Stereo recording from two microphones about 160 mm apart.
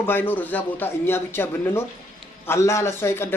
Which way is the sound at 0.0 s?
15° left (ahead or behind).